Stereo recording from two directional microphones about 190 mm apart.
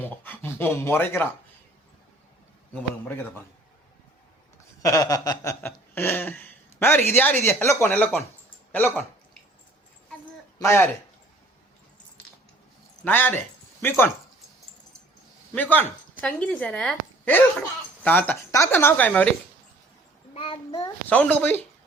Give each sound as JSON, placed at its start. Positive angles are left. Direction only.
{"t": 0.0, "sound": "speech", "side_deg": 10}
{"t": 2.7, "sound": "speech", "side_deg": 10}
{"t": 4.8, "sound": "speech", "side_deg": 20}
{"t": 10.6, "sound": "speech", "side_deg": 15}
{"t": 13.0, "sound": "speech", "side_deg": 10}
{"t": 15.5, "sound": "speech", "side_deg": 10}
{"t": 20.3, "sound": "a child's voice", "side_deg": 30}
{"t": 21.1, "sound": "speech", "side_deg": 10}